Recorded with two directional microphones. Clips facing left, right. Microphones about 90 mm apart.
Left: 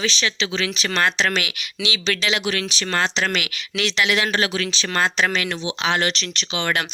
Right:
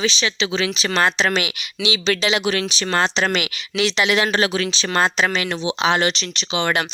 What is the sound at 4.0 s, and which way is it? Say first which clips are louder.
Speech: right 2 dB; 30° right (ahead or behind).